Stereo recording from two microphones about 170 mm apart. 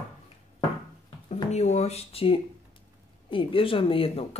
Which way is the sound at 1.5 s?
40° left (ahead or behind).